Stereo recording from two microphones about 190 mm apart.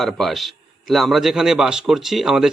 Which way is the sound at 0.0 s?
Centre (ahead or behind).